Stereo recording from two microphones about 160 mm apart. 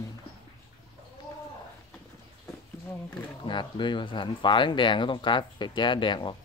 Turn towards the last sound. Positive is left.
turn(degrees=30)  # may be behind; listen again after turning